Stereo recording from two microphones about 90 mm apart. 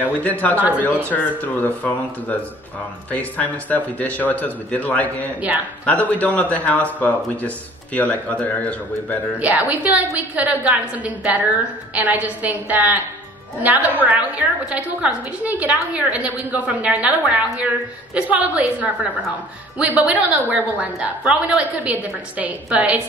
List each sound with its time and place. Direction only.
0.0 s a man's voice: 15° left (ahead or behind)
9.4 s a woman's voice: 15° right (ahead or behind)
22.4 s a woman's voice: 15° right (ahead or behind)